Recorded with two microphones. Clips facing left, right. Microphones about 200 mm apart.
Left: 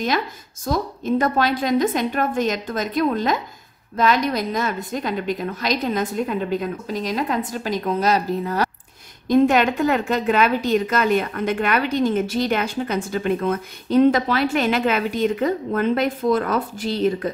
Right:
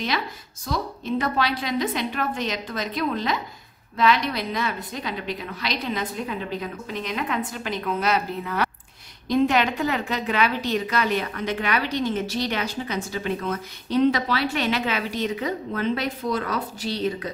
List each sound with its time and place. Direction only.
0.7 s a woman's voice: 45° left (ahead or behind)